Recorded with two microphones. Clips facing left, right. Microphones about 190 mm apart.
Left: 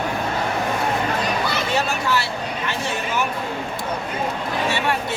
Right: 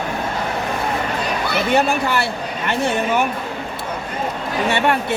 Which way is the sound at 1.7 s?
55° right (ahead or behind).